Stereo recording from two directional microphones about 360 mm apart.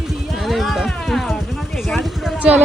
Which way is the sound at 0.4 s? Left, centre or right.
Centre.